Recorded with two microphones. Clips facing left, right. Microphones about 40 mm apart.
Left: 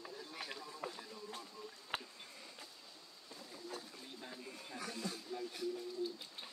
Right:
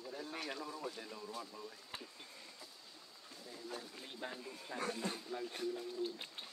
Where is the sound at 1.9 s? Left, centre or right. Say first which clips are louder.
Left 8 dB; left.